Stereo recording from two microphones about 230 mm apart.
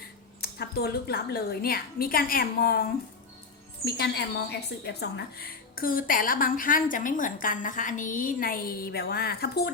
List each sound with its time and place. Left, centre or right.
0.4 s a woman's voice: left
3.8 s a woman's voice: left